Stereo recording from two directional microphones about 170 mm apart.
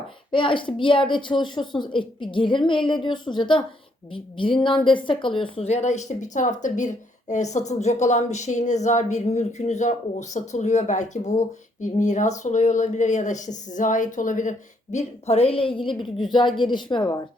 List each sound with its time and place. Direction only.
0.3 s a woman's voice: 30° left (ahead or behind); by 14.5 s 50° left (ahead or behind)
14.9 s a woman's voice: 35° left (ahead or behind)